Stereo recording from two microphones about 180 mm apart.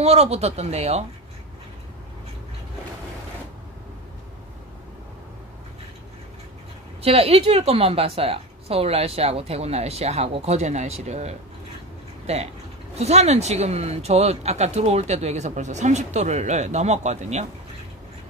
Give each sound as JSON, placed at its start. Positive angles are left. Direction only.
{"t": 0.0, "sound": "speech", "side_deg": -35}
{"t": 7.0, "sound": "speech", "side_deg": -35}